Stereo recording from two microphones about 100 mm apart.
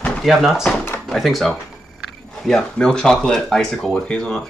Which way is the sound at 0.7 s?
25° left (ahead or behind).